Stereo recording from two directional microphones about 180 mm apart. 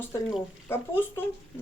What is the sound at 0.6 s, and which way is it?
Speech, 15° left (ahead or behind).